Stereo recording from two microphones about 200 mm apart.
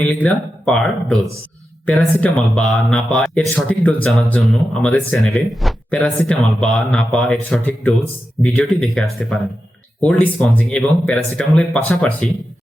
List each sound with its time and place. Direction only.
0.0 s speech: 5° left (ahead or behind)